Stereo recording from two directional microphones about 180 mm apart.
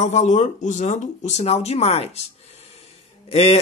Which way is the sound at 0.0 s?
40° left (ahead or behind).